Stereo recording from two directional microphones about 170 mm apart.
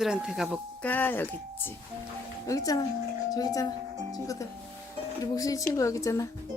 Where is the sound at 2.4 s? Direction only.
20° left (ahead or behind).